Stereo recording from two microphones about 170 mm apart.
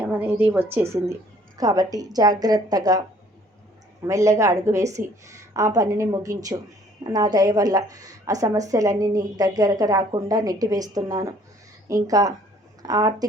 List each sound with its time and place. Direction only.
0.0 s a woman's voice: 10° right (ahead or behind)
4.0 s a woman's voice: 20° right (ahead or behind)